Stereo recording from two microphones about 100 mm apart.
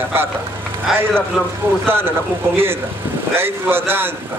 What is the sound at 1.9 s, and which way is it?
Speech, 25° right (ahead or behind).